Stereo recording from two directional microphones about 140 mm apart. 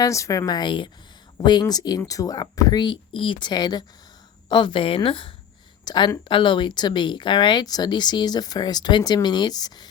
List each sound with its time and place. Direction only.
0.0 s speech: 25° left (ahead or behind)